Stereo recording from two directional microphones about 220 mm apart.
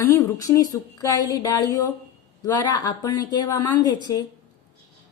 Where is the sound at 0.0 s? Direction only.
10° left (ahead or behind).